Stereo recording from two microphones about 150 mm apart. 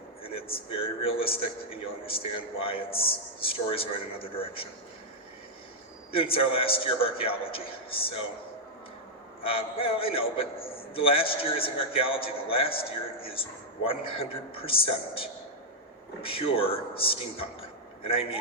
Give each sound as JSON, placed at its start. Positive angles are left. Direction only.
{"t": 0.5, "sound": "a man's voice", "side_deg": 40}
{"t": 6.1, "sound": "a man's voice", "side_deg": 40}
{"t": 9.4, "sound": "a man's voice", "side_deg": 40}